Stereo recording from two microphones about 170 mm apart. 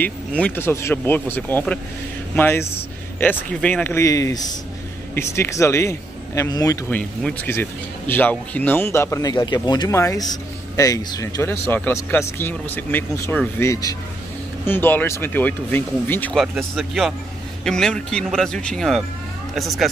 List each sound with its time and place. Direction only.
0.0 s speech: 10° left (ahead or behind)
7.0 s speech: 10° left (ahead or behind)